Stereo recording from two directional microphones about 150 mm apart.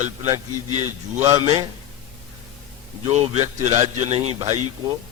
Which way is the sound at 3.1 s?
45° right (ahead or behind).